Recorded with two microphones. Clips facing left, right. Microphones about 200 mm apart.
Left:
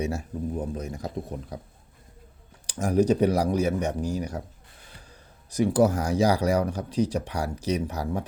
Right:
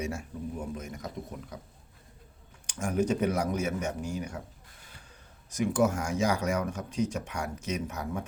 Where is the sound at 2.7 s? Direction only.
35° left (ahead or behind).